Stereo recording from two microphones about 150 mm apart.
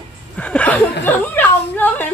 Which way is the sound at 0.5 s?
10° left (ahead or behind).